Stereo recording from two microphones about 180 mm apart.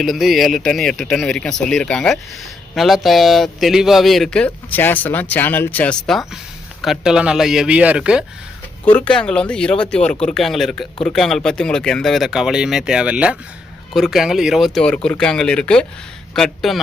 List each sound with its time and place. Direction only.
0.0 s a man's voice: centre (ahead or behind)
8.8 s a man's voice: 10° left (ahead or behind)